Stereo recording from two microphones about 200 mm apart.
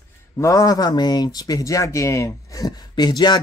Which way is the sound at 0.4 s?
15° left (ahead or behind).